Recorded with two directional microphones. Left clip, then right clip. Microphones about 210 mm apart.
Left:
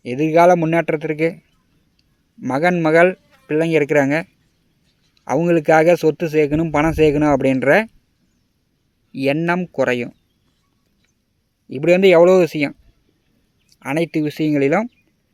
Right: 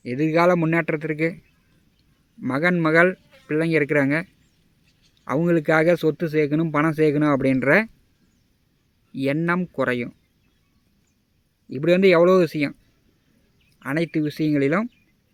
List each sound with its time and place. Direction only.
0.0 s speech: 15° left (ahead or behind)
2.4 s speech: 15° left (ahead or behind)
9.1 s speech: 15° left (ahead or behind)
11.7 s speech: 15° left (ahead or behind)
13.7 s speech: 20° left (ahead or behind)